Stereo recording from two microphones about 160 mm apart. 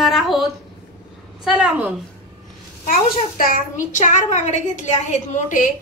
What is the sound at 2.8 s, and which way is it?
Speech, 60° left (ahead or behind).